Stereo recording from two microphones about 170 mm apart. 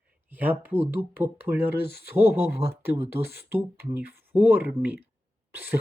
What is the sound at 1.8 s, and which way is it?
Speech, 70° left (ahead or behind).